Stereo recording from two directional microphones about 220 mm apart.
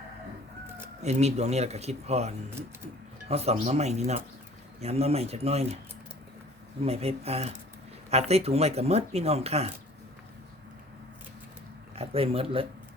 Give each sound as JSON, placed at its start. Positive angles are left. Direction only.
{"t": 1.0, "sound": "speech", "side_deg": -30}
{"t": 6.8, "sound": "speech", "side_deg": -30}
{"t": 11.9, "sound": "speech", "side_deg": -25}